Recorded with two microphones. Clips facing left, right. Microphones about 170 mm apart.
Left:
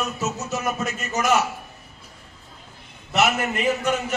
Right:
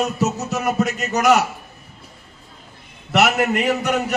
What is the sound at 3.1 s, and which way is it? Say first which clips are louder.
Speech: right 4 dB; 70° right (ahead or behind).